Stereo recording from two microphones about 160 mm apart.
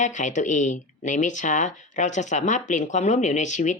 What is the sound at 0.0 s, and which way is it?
Speech, 50° left (ahead or behind).